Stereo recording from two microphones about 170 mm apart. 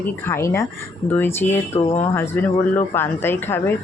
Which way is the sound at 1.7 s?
40° left (ahead or behind).